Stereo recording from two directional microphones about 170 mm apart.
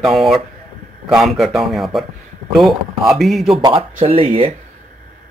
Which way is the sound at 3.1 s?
Centre (ahead or behind).